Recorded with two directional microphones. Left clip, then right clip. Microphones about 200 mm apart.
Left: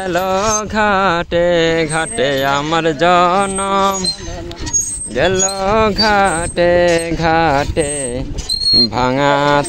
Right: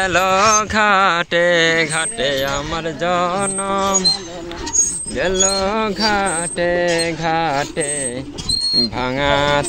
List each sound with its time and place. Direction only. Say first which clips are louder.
0.0 s mantra: right 2 dB; 20° left (ahead or behind)
5.1 s mantra: left 3 dB; 40° left (ahead or behind)
8.7 s a sound: left 5 dB; 30° left (ahead or behind)